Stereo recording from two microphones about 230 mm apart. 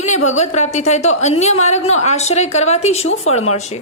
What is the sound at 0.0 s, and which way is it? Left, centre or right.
A woman's voice, left.